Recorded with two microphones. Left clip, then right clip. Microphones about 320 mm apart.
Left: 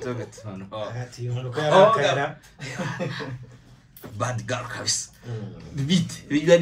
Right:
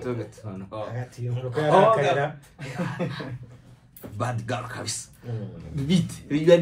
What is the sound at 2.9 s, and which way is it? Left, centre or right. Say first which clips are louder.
Speech: left 1 dB; centre.